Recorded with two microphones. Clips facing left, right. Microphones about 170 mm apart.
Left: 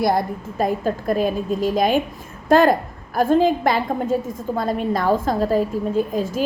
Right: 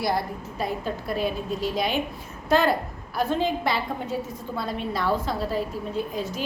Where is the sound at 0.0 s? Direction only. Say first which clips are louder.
Left 6 dB; 50° left (ahead or behind).